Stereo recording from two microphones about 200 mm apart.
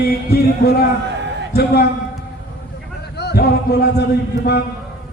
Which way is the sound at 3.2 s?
55° left (ahead or behind).